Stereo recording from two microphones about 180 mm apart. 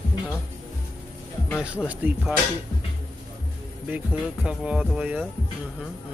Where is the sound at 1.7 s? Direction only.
5° right (ahead or behind).